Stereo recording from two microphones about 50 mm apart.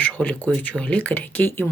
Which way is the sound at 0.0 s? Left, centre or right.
Left.